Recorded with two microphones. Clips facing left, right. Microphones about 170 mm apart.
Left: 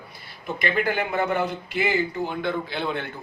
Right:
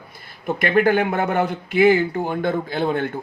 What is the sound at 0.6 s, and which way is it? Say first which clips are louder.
Speech: right 8 dB; 55° right (ahead or behind).